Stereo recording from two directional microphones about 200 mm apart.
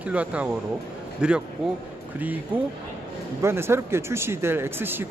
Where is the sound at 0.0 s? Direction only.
5° right (ahead or behind).